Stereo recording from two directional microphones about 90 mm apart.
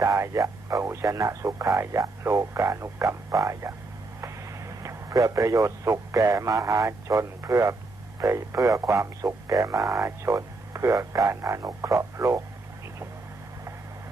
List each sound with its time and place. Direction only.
0.0 s a man's voice: 35° right (ahead or behind)